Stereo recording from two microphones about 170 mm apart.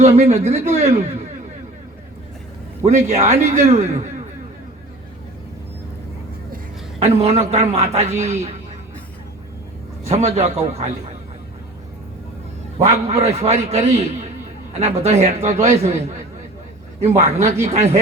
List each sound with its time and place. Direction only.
0.0 s a man's voice: 40° right (ahead or behind)
2.8 s a man's voice: 40° right (ahead or behind)
7.0 s a man's voice: 40° right (ahead or behind)
10.0 s a man's voice: 40° right (ahead or behind)
12.8 s a man's voice: 40° right (ahead or behind)